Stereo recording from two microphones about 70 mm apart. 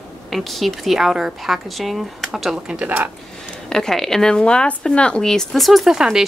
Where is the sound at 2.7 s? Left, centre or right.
Centre.